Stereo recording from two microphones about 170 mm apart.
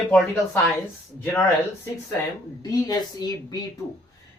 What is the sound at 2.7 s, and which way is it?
Speech, 20° left (ahead or behind).